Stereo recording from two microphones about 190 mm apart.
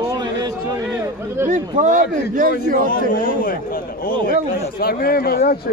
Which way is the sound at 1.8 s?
45° right (ahead or behind).